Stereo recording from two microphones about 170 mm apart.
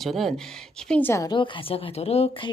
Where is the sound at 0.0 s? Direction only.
Centre (ahead or behind).